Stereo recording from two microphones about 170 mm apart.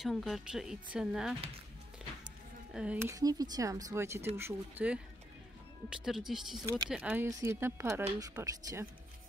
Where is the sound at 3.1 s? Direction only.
20° right (ahead or behind).